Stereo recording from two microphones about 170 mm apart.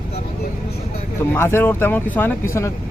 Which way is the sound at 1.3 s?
15° left (ahead or behind).